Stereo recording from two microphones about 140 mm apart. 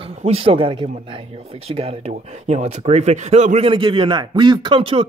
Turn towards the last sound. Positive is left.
turn(degrees=-40)  # may be behind; listen again after turning